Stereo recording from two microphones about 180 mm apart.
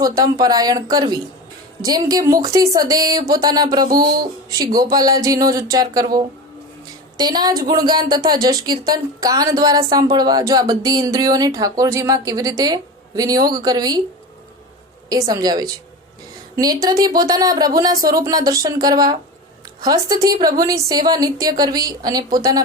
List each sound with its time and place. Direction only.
0.0 s speech: 20° right (ahead or behind)
7.2 s speech: 20° right (ahead or behind)
15.1 s speech: 20° right (ahead or behind)